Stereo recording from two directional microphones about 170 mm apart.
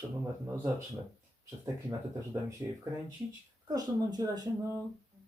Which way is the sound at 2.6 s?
20° right (ahead or behind).